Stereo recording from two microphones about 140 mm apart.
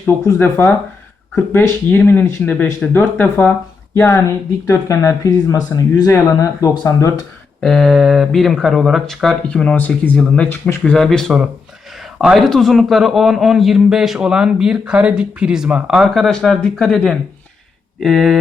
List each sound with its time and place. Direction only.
0.0 s speech: 15° left (ahead or behind)
7.6 s a man's voice: centre (ahead or behind)